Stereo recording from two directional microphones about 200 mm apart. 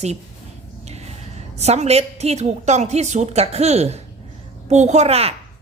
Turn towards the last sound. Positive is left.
turn(degrees=-30)  # may be behind; listen again after turning